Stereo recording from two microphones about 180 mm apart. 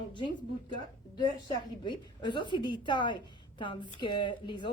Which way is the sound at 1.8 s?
25° left (ahead or behind).